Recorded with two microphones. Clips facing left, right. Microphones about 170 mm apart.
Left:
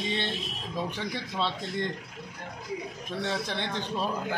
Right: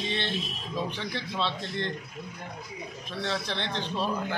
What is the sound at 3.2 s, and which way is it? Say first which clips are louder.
Speech: even; 10° left (ahead or behind).